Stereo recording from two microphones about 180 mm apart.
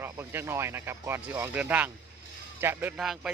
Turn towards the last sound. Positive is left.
turn(degrees=0)  # may be behind; listen again after turning